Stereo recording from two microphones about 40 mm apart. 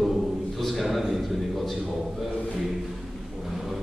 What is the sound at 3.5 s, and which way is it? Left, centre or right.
Vehicle, centre.